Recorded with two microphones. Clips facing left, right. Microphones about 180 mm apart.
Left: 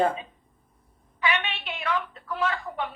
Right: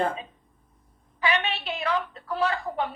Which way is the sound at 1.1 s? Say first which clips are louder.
Right 2 dB; 35° right (ahead or behind).